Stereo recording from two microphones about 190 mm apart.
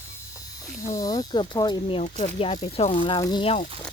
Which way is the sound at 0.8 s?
15° left (ahead or behind).